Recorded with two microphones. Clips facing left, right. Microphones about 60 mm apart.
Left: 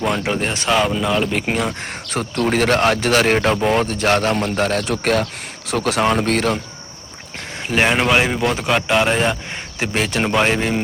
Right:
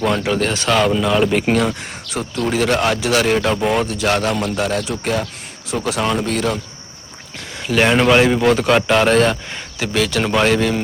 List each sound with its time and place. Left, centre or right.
0.2 s speech: centre
0.7 s speech: centre
2.0 s speech: left
6.0 s speech: left
6.2 s speech: left
7.8 s speech: centre
9.8 s speech: left